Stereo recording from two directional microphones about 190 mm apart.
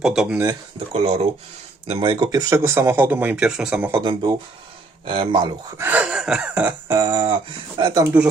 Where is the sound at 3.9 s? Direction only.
20° right (ahead or behind).